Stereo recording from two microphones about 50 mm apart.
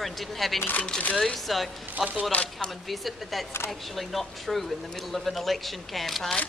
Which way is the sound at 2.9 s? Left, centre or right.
Centre.